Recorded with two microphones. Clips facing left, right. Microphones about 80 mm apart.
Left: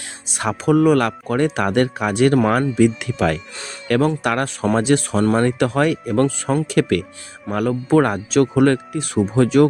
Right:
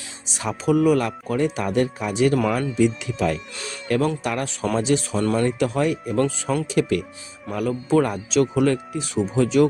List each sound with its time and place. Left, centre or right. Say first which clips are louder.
0.3 s speech: left 4 dB; left
6.2 s speech: left 4 dB; left
6.7 s speech: left 3 dB; left